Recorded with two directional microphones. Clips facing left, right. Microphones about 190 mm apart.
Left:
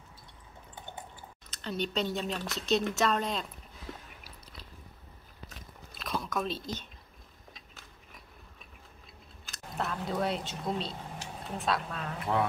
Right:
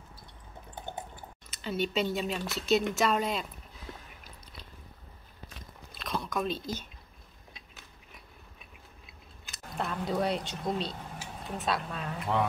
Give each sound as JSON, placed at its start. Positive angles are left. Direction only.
{"t": 1.5, "sound": "speech", "side_deg": -5}
{"t": 5.9, "sound": "chewing", "side_deg": 0}
{"t": 9.5, "sound": "speech", "side_deg": 0}